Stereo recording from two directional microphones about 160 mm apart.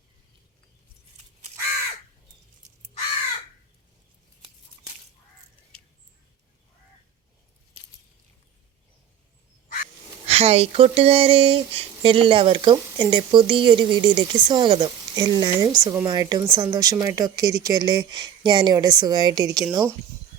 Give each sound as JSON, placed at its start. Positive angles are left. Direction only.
{"t": 10.2, "sound": "speech", "side_deg": -40}